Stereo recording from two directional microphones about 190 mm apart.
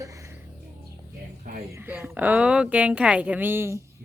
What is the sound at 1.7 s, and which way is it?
A woman's voice, 10° right (ahead or behind).